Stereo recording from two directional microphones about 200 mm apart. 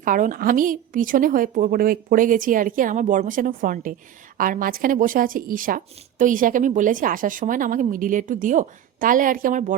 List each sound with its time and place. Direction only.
0.0 s a woman's voice: 40° right (ahead or behind)